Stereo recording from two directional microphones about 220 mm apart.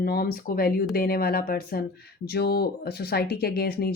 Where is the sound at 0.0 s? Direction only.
45° left (ahead or behind).